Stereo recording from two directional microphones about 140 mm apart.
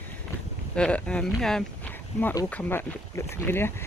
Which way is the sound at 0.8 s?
10° left (ahead or behind).